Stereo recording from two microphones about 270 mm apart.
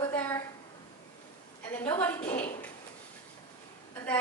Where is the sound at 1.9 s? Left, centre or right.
Centre.